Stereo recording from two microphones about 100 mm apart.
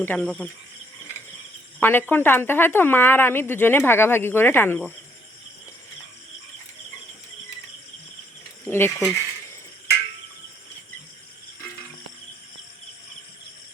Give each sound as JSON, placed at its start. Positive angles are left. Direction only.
{"t": 0.0, "sound": "speech", "side_deg": 20}
{"t": 1.8, "sound": "speech", "side_deg": 20}
{"t": 8.6, "sound": "speech", "side_deg": 25}